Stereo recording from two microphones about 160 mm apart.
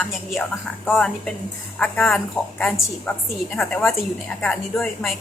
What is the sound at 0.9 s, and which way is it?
A woman's voice, 5° left (ahead or behind).